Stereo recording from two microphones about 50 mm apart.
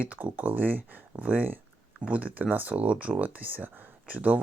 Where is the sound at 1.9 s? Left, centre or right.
Right.